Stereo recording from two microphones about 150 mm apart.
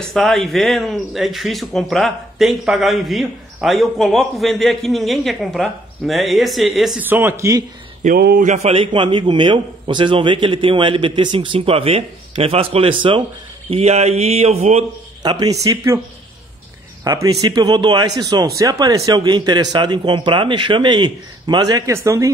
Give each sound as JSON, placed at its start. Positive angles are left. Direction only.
{"t": 0.1, "sound": "a man's voice", "side_deg": 0}
{"t": 7.1, "sound": "speech", "side_deg": -15}
{"t": 8.0, "sound": "speech", "side_deg": -80}
{"t": 8.5, "sound": "speech", "side_deg": -55}
{"t": 8.7, "sound": "a man's voice", "side_deg": -35}
{"t": 15.2, "sound": "speech", "side_deg": -25}
{"t": 17.0, "sound": "speech", "side_deg": -25}